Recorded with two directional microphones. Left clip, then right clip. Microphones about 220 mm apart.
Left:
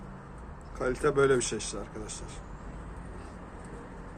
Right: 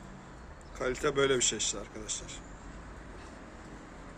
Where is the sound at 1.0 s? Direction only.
10° right (ahead or behind).